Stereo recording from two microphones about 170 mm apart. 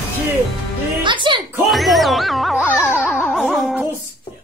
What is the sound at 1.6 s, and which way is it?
Music, centre (ahead or behind).